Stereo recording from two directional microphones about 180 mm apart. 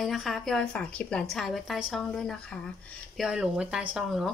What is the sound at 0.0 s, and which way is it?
Speech, centre (ahead or behind).